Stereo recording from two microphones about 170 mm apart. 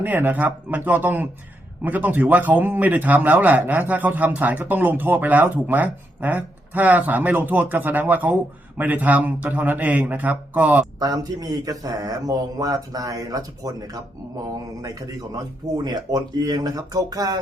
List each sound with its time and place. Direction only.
0.0 s speech: 10° right (ahead or behind)
11.0 s speech: 20° right (ahead or behind)